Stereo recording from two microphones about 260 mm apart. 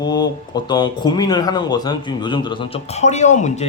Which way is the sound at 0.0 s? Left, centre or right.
Centre.